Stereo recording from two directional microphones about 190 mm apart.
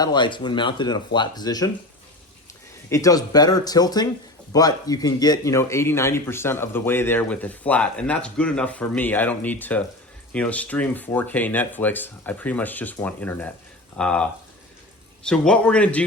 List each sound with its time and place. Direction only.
0.0 s speech: 25° left (ahead or behind)
2.9 s a man's voice: 20° left (ahead or behind)